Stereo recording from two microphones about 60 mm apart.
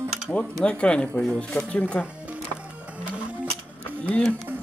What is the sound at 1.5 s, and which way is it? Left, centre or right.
Speech, left.